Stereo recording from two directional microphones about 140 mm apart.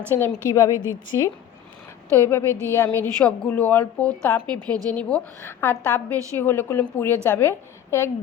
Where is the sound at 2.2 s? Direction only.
15° left (ahead or behind).